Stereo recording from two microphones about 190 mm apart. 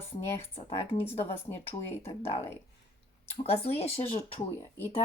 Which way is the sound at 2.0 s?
30° left (ahead or behind).